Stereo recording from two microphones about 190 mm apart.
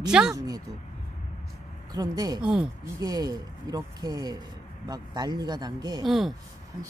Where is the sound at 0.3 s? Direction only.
20° right (ahead or behind).